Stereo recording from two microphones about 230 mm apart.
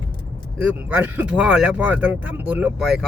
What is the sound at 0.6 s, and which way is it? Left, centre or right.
Speech, centre.